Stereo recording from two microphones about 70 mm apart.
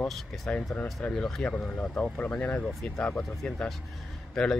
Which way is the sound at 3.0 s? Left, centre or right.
Centre.